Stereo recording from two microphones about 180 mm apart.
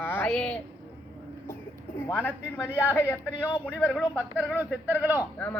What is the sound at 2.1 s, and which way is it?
Speech, 10° left (ahead or behind).